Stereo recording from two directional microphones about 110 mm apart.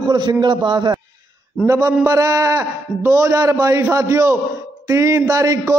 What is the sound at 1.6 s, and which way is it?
Speech, 25° right (ahead or behind).